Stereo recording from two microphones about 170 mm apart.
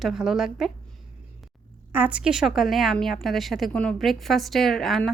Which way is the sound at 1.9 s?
10° right (ahead or behind).